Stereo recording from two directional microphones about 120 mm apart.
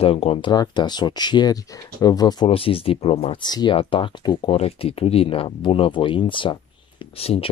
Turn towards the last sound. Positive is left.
turn(degrees=55)  # may be behind; listen again after turning